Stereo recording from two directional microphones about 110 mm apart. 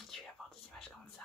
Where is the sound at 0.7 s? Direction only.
5° left (ahead or behind).